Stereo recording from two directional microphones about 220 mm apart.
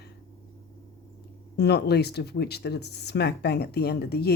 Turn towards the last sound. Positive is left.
turn(degrees=45)  # may be behind; listen again after turning